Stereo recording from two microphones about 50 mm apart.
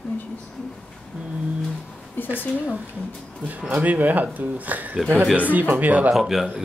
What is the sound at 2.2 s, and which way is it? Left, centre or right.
Speech, left.